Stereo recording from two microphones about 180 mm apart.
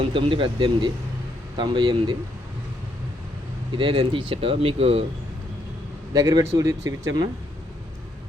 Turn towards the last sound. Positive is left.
turn(degrees=-20)  # may be behind; listen again after turning